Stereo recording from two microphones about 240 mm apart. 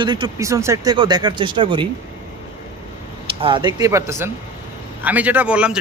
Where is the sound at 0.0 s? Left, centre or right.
Centre.